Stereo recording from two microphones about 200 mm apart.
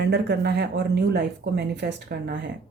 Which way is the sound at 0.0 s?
55° right (ahead or behind).